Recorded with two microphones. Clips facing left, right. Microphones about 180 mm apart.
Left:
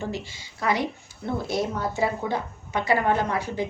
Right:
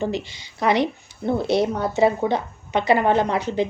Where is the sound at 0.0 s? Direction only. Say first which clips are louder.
Right 6 dB; 20° right (ahead or behind).